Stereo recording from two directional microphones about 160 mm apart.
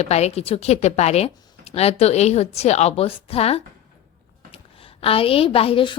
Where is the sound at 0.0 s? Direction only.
40° left (ahead or behind).